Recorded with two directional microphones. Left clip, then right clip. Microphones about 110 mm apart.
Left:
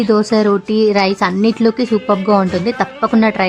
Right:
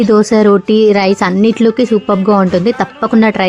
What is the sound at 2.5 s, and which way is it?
A woman's voice, 35° right (ahead or behind).